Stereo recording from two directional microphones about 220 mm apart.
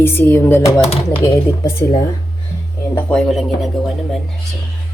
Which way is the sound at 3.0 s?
5° left (ahead or behind).